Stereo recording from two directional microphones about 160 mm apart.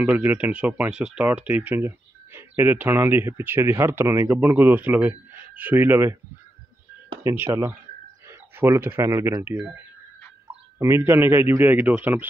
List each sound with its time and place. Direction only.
0.0 s speech: 10° right (ahead or behind)
7.2 s speech: 15° right (ahead or behind)